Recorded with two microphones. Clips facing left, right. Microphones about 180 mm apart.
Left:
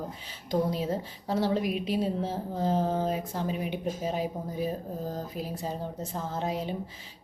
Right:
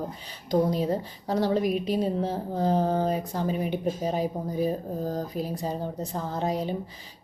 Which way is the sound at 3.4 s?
45° right (ahead or behind).